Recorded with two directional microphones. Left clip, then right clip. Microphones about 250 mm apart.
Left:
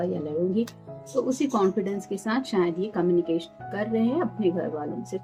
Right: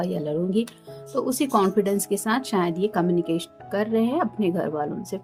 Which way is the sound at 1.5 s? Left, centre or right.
Right.